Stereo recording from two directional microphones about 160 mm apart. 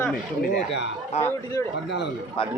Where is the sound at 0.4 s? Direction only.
90° left.